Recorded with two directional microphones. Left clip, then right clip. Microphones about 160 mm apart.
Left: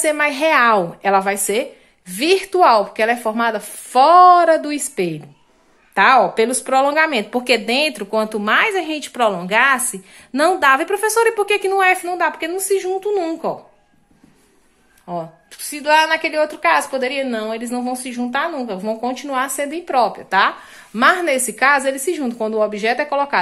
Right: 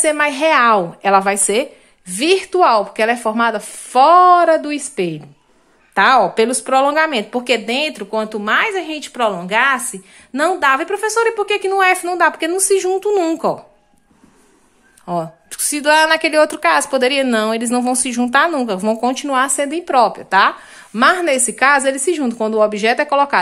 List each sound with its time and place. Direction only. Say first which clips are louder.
0.0 s a woman's voice: right 2 dB; 20° right (ahead or behind)
12.2 s a woman's voice: right 5 dB; 35° right (ahead or behind)
15.0 s a woman's voice: right 5 dB; 45° right (ahead or behind)